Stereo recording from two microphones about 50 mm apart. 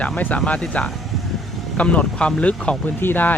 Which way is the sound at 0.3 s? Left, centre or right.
Left.